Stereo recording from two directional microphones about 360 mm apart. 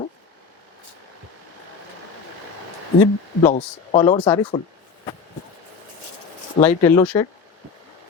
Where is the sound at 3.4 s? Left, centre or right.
Centre.